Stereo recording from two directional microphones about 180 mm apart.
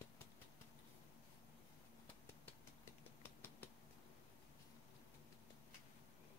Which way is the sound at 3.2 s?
10° left (ahead or behind).